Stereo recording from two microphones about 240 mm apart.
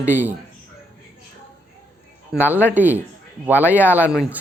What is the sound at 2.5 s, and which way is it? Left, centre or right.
Speech, centre.